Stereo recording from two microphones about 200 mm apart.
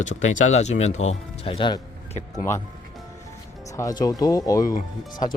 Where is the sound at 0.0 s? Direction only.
35° left (ahead or behind).